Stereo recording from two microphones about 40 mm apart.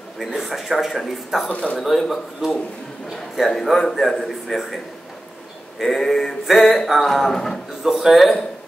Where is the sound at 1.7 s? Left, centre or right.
Centre.